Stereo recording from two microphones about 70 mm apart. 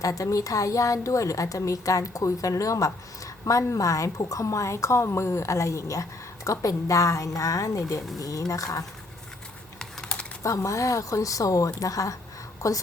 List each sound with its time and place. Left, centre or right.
0.0 s a woman's voice: left
9.7 s typing: centre
10.4 s a woman's voice: left